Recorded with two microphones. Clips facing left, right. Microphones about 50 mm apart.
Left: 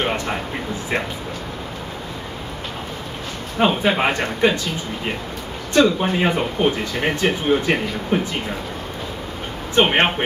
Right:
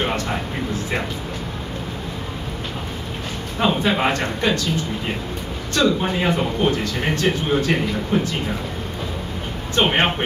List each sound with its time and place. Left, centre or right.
0.0 s speech: centre
3.5 s a man's voice: left
5.7 s a man's voice: left
9.8 s speech: centre